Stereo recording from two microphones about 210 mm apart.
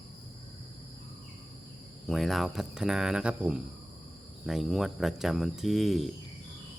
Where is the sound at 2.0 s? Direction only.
Centre (ahead or behind).